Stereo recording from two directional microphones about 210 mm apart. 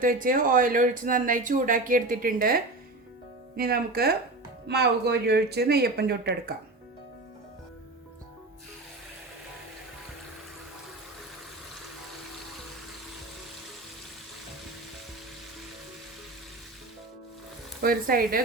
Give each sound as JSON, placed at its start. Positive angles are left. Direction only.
{"t": 0.0, "sound": "speech", "side_deg": -40}
{"t": 17.8, "sound": "speech", "side_deg": -45}